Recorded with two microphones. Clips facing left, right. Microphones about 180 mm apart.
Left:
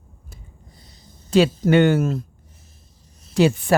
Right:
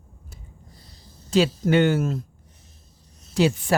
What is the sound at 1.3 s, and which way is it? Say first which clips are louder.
Speech: left 4 dB; 65° left (ahead or behind).